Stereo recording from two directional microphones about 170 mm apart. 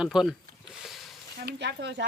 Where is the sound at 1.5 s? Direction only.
90° right.